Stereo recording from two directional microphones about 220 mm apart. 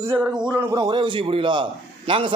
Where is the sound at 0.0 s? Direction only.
10° right (ahead or behind).